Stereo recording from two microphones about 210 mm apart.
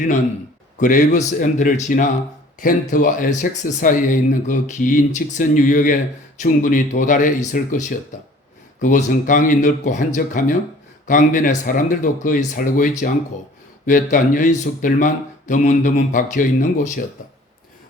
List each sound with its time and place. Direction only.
0.8 s speech: 40° left (ahead or behind)